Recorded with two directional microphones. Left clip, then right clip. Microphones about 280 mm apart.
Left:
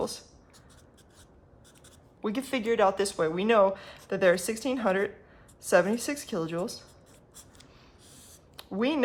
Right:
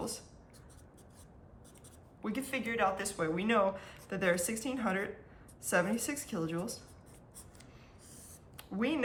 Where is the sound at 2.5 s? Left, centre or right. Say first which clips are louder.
Left 8 dB; centre.